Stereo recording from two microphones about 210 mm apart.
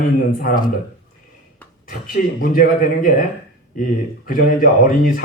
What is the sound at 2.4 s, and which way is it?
Speech, 40° left (ahead or behind).